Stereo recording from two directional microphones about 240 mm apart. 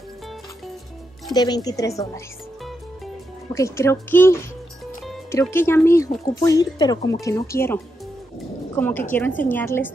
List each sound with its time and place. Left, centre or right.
1.3 s speech: centre
3.5 s a woman's voice: centre